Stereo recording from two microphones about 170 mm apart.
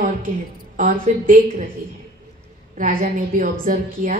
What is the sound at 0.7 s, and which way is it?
Speech, 50° right (ahead or behind).